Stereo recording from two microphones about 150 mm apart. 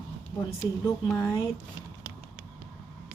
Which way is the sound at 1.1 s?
20° left (ahead or behind).